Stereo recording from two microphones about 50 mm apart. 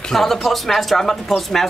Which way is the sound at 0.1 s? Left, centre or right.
Centre.